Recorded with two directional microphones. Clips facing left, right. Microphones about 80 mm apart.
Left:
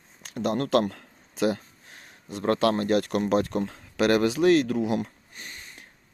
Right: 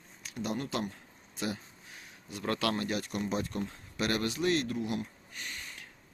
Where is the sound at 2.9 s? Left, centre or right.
Left.